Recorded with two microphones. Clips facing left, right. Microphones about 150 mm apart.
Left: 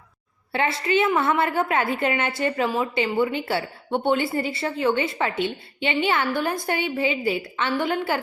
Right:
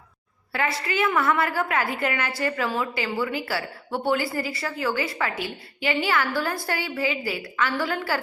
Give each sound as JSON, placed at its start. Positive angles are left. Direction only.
{"t": 0.5, "sound": "a woman's voice", "side_deg": 25}